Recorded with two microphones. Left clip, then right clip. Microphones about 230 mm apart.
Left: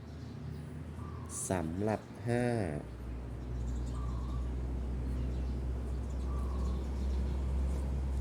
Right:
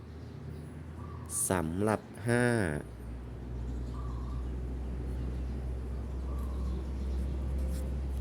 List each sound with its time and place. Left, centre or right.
1.5 s speech: right